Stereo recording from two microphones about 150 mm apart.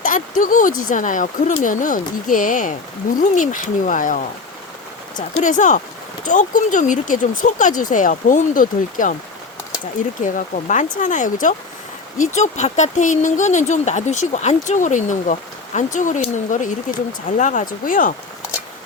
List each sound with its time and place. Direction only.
0.0 s speech: 65° left (ahead or behind)
5.4 s speech: 55° left (ahead or behind)
10.2 s speech: 60° left (ahead or behind)